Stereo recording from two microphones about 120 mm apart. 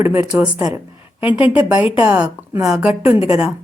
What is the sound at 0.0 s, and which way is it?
A woman's voice, 15° right (ahead or behind).